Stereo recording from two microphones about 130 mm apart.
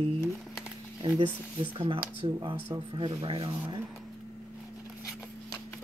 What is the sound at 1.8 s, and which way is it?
Speech, 40° right (ahead or behind).